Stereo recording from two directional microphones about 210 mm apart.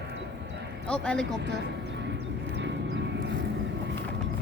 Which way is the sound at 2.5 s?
55° right (ahead or behind).